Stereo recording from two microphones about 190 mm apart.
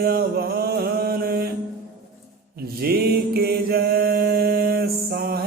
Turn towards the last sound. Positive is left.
turn(degrees=-55)  # may be behind; listen again after turning